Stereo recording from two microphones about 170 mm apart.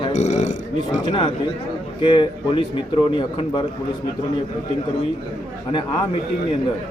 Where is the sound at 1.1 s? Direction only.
30° left (ahead or behind).